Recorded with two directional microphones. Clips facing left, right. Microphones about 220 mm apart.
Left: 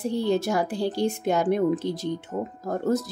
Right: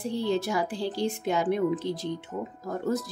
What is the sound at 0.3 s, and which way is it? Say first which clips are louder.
Speech: left 3 dB; 45° left (ahead or behind).